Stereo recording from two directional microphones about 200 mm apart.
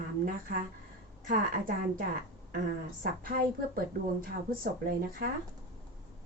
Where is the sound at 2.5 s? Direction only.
40° right (ahead or behind).